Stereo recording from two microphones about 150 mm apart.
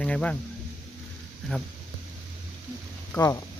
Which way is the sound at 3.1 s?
20° left (ahead or behind).